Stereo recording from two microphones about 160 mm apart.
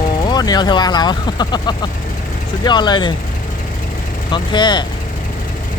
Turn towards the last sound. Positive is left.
turn(degrees=30)  # may be behind; listen again after turning